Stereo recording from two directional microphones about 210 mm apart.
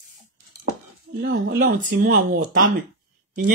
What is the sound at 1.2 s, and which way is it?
Speech, 45° right (ahead or behind).